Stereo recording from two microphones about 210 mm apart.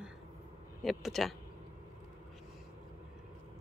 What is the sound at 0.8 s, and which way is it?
Speech, centre (ahead or behind).